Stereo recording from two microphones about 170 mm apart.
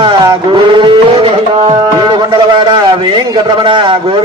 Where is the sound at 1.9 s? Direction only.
25° right (ahead or behind).